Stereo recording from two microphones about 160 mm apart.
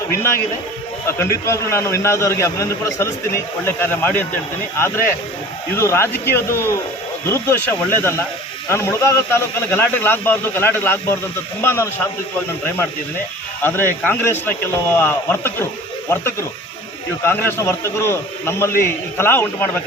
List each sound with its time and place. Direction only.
0.1 s a man's voice: 15° left (ahead or behind)
13.6 s a man's voice: 15° left (ahead or behind)